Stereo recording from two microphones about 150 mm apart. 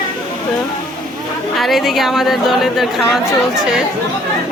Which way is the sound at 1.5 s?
Centre (ahead or behind).